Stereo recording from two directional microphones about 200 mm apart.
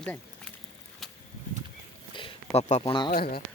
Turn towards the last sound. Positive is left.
turn(degrees=50)  # may be behind; listen again after turning